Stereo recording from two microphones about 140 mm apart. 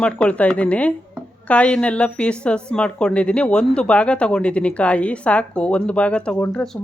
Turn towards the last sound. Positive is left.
turn(degrees=10)  # may be behind; listen again after turning